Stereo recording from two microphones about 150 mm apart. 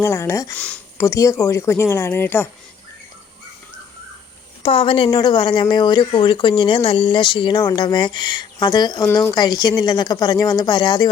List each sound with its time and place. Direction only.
0.0 s speech: 15° left (ahead or behind)
0.5 s speech: 10° left (ahead or behind)
0.9 s speech: 20° left (ahead or behind)
4.6 s speech: 35° left (ahead or behind)
9.0 s speech: 15° left (ahead or behind)
9.3 s a woman's voice: 30° left (ahead or behind)